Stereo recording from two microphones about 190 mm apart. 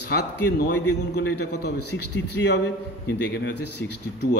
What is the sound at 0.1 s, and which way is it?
A man's voice, 60° left (ahead or behind).